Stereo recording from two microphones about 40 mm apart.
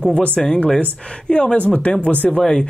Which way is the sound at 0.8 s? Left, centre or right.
Left.